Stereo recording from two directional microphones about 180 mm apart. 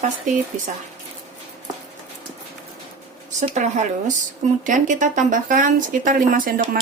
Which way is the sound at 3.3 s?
40° right (ahead or behind).